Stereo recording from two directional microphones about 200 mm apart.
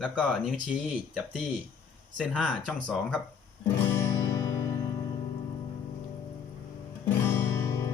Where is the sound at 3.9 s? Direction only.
15° left (ahead or behind).